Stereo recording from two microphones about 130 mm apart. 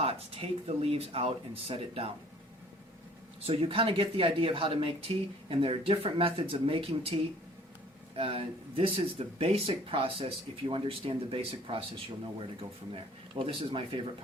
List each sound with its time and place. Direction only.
0.0 s speech: 45° right (ahead or behind)
3.4 s speech: 45° right (ahead or behind)
8.1 s speech: 45° right (ahead or behind)